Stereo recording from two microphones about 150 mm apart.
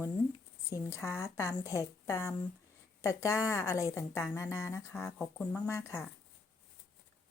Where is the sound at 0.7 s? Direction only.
20° left (ahead or behind).